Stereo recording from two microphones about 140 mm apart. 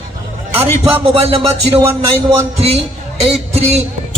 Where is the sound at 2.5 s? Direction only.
45° right (ahead or behind).